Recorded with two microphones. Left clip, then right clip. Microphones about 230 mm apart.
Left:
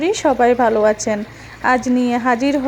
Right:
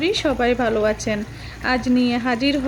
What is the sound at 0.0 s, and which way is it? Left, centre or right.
Speech, centre.